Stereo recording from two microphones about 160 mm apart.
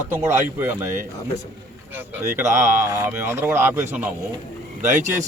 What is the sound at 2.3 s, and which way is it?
Speech, 15° right (ahead or behind).